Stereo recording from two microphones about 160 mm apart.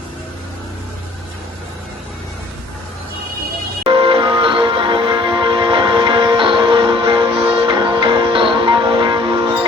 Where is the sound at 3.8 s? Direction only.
30° right (ahead or behind).